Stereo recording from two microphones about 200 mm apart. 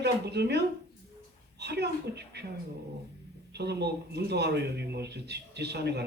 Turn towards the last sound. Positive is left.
turn(degrees=-55)  # may be behind; listen again after turning